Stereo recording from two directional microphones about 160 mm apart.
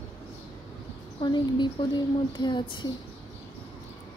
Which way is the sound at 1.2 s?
30° left (ahead or behind).